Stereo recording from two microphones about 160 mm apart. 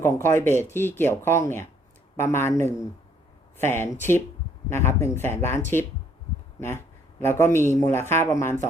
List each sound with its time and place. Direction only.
0.0 s speech: 15° left (ahead or behind)
7.2 s speech: 15° left (ahead or behind)